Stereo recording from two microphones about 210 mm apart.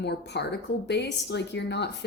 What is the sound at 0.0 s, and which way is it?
A woman's voice, 55° left (ahead or behind).